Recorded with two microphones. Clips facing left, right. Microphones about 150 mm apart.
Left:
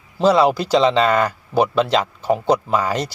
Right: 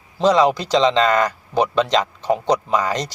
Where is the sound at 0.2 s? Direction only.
10° left (ahead or behind).